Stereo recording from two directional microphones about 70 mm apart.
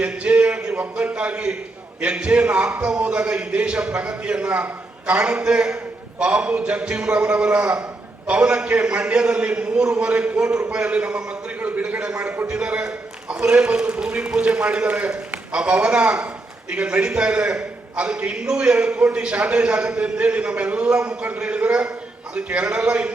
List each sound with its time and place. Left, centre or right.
0.0 s a man's voice: centre
11.6 s a sound: centre
12.5 s a man's voice: centre